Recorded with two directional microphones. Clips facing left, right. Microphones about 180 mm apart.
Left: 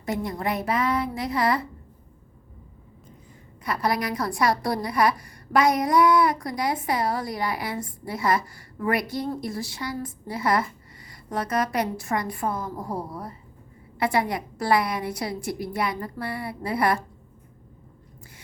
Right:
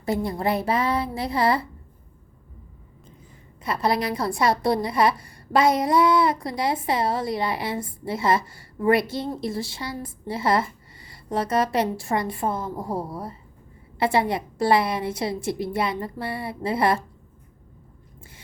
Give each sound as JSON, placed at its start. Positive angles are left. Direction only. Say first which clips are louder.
{"t": 0.0, "sound": "a woman's voice", "louder": "right 3 dB", "side_deg": -30}
{"t": 3.6, "sound": "a woman's voice", "louder": "right 2 dB", "side_deg": -25}